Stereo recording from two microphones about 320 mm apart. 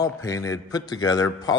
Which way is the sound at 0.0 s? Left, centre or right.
Centre.